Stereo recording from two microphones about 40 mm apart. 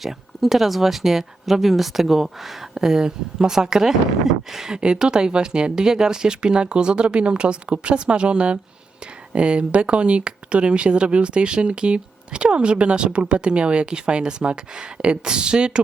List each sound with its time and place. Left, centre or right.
0.0 s speech: centre
4.8 s speech: right